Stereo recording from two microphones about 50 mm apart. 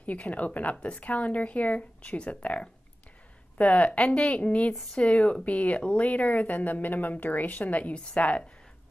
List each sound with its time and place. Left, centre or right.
0.0 s speech: left